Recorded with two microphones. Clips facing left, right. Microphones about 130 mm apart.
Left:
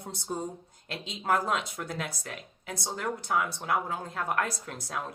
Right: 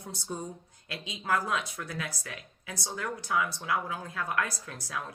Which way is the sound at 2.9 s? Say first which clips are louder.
Left 3 dB; 25° left (ahead or behind).